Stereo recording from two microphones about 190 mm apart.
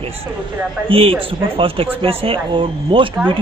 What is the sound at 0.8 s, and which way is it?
A woman's voice, 30° right (ahead or behind).